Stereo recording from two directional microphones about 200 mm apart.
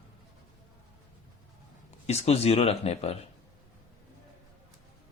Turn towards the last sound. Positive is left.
turn(degrees=30)  # may be behind; listen again after turning